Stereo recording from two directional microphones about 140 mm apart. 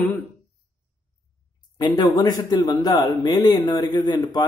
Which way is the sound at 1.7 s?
30° left (ahead or behind).